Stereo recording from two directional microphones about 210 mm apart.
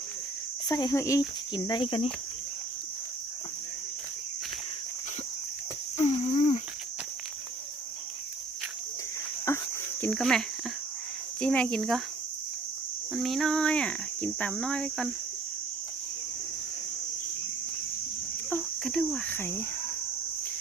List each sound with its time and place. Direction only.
0.7 s speech: 15° left (ahead or behind)
1.5 s cricket: 20° left (ahead or behind)
6.0 s cricket: 30° left (ahead or behind)
9.5 s cricket: 10° left (ahead or behind)
10.0 s speech: 5° left (ahead or behind)
13.1 s speech: centre (ahead or behind)
18.5 s cricket: centre (ahead or behind)